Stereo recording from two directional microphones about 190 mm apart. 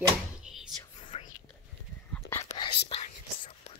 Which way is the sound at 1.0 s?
35° left (ahead or behind).